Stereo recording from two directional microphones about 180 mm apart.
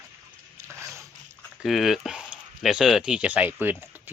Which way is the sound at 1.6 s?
Centre (ahead or behind).